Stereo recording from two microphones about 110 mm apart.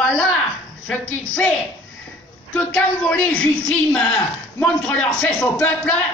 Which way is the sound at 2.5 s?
15° left (ahead or behind).